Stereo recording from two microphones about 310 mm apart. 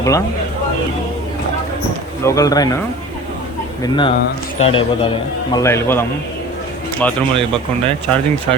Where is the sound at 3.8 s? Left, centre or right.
Centre.